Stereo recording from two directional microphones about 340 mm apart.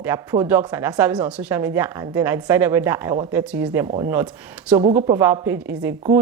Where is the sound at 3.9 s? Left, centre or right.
Right.